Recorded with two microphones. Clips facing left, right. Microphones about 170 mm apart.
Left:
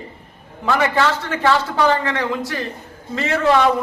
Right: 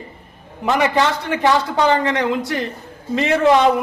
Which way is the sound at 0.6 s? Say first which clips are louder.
Right 1 dB; 20° right (ahead or behind).